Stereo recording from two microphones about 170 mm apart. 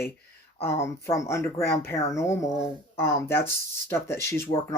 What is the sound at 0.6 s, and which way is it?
Speech, 15° left (ahead or behind).